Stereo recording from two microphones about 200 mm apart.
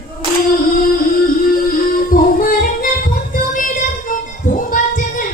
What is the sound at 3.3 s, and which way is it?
Child singing, 40° left (ahead or behind).